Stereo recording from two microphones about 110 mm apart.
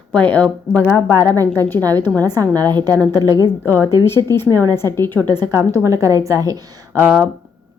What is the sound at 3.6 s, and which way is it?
Speech, 20° right (ahead or behind).